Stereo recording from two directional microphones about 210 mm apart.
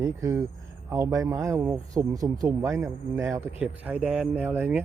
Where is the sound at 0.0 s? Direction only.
15° right (ahead or behind).